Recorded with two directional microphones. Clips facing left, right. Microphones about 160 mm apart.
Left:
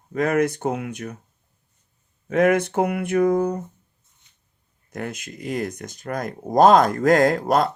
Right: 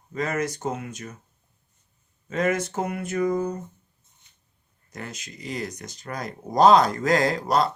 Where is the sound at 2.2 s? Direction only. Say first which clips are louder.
Left 6 dB; 60° left (ahead or behind).